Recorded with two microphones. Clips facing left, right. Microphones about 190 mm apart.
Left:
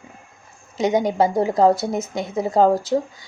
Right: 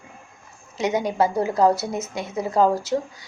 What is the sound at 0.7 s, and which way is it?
Speech, 25° left (ahead or behind).